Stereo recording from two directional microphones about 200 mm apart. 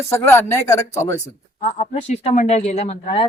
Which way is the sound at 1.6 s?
35° left (ahead or behind).